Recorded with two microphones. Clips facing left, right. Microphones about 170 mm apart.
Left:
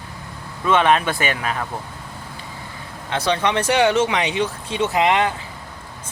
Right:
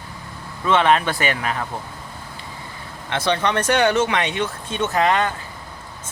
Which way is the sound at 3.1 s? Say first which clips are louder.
Left 1 dB; 10° left (ahead or behind).